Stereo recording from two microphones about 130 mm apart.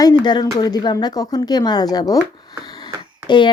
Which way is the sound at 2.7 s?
35° left (ahead or behind).